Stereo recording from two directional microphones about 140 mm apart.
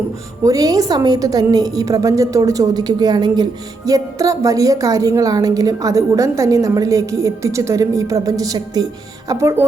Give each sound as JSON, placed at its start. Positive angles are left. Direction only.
{"t": 0.4, "sound": "a woman's voice", "side_deg": -25}